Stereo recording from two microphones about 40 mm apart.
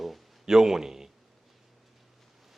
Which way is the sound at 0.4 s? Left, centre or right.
Centre.